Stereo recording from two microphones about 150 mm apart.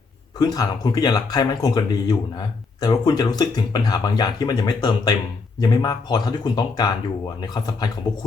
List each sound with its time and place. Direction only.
0.3 s speech: 25° left (ahead or behind)